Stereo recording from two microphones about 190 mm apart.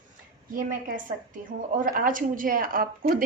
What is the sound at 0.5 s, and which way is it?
A woman's voice, 45° right (ahead or behind).